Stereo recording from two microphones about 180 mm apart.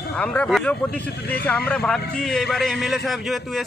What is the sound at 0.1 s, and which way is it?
A man's voice, 5° left (ahead or behind).